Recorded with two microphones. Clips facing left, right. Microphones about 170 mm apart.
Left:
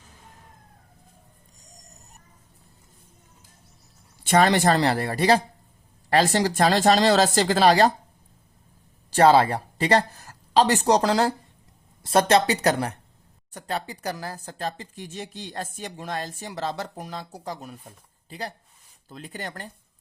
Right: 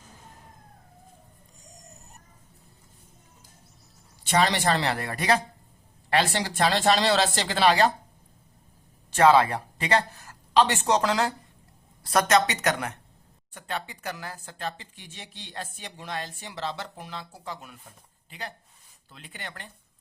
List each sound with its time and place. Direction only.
4.2 s speech: 50° left (ahead or behind)
9.0 s speech: 35° left (ahead or behind)